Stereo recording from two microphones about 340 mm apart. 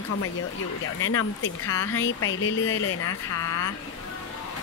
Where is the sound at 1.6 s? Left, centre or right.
Centre.